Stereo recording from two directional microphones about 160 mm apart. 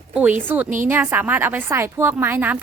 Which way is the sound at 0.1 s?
10° right (ahead or behind).